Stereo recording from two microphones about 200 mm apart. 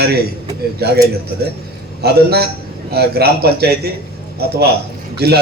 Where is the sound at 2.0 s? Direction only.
55° right (ahead or behind).